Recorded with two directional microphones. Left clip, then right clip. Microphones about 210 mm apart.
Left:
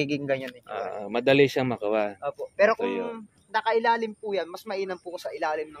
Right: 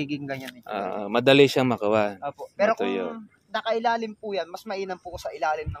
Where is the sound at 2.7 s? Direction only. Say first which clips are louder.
Right 1 dB; 35° right (ahead or behind).